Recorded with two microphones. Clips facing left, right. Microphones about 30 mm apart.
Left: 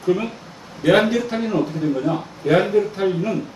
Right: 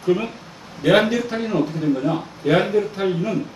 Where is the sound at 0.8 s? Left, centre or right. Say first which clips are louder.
Even; centre.